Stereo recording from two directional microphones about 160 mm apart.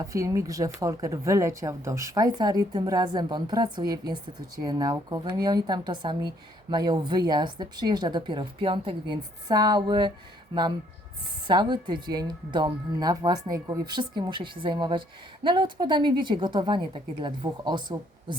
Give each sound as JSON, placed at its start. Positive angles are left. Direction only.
{"t": 0.0, "sound": "speech", "side_deg": -20}